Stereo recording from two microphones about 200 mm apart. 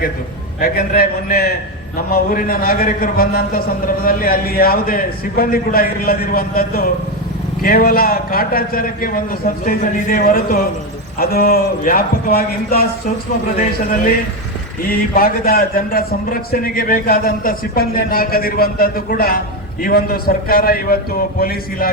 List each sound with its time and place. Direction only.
0.6 s a man's voice: 45° left (ahead or behind)
15.1 s a man's voice: 50° left (ahead or behind)